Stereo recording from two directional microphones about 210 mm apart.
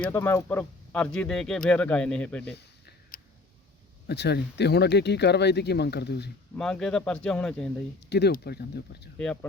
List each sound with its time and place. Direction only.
0.1 s speech: 10° left (ahead or behind)
4.0 s speech: 50° left (ahead or behind)
6.6 s speech: 5° left (ahead or behind)
8.1 s speech: 50° left (ahead or behind)
9.1 s speech: 5° left (ahead or behind)